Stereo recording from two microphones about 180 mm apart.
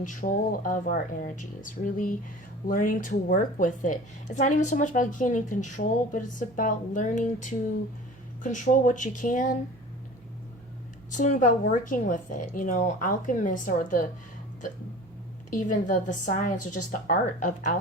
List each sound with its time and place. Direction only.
0.0 s a woman's voice: 45° left (ahead or behind)
11.1 s a woman's voice: 45° left (ahead or behind)
15.4 s a woman's voice: 45° left (ahead or behind)